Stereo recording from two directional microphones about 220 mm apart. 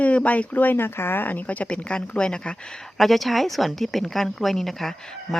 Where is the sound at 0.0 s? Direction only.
5° left (ahead or behind).